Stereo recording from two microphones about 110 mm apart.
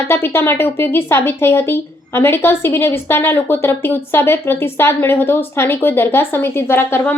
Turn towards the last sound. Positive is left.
turn(degrees=20)  # may be behind; listen again after turning